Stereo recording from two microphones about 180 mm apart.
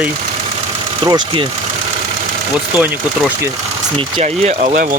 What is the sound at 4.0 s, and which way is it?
Speech, 35° right (ahead or behind).